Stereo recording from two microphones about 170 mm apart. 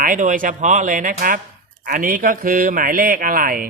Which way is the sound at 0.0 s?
50° right (ahead or behind).